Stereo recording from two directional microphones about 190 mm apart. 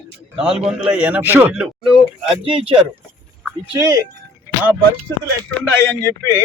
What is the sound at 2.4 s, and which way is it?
Speech, 30° right (ahead or behind).